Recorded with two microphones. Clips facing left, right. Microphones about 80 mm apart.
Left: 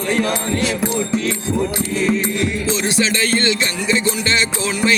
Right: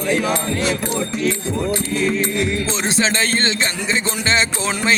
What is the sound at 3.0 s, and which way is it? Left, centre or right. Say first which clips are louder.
Music: right 1 dB; right.